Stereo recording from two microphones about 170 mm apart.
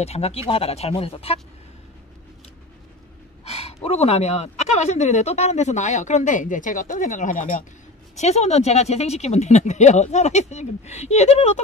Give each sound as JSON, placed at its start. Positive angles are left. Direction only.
{"t": 0.0, "sound": "speech", "side_deg": 35}
{"t": 3.4, "sound": "speech", "side_deg": 40}